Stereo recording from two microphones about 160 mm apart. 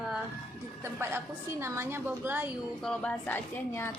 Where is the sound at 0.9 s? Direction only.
15° right (ahead or behind).